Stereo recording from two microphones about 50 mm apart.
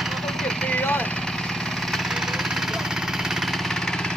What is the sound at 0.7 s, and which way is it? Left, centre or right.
Vehicle, left.